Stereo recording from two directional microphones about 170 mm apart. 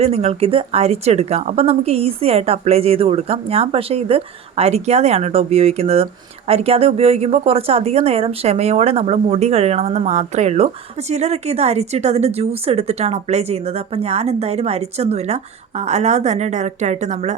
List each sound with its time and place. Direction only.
0.0 s speech: 35° right (ahead or behind)